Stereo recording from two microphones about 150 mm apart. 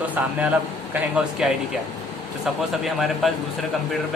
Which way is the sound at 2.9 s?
Centre (ahead or behind).